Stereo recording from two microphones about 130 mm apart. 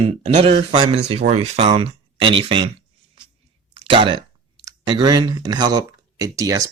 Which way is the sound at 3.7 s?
40° right (ahead or behind).